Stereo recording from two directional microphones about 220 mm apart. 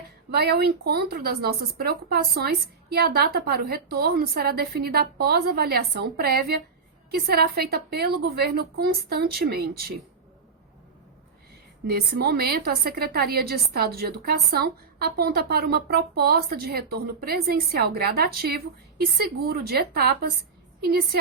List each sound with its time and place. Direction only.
0.3 s a woman's voice: 45° right (ahead or behind)
11.9 s a woman's voice: 45° right (ahead or behind)